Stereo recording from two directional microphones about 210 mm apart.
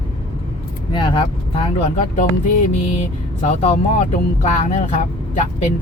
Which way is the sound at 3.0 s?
30° left (ahead or behind).